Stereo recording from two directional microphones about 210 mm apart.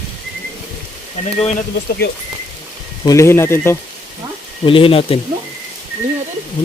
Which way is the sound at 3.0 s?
15° left (ahead or behind).